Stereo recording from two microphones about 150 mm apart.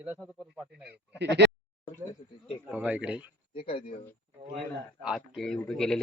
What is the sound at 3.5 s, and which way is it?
Speech, 40° left (ahead or behind).